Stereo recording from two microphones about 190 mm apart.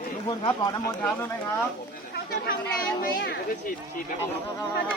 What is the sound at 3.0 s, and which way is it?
Speech, 50° left (ahead or behind).